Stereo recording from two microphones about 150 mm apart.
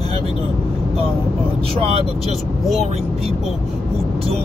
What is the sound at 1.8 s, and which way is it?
Speech, 40° right (ahead or behind).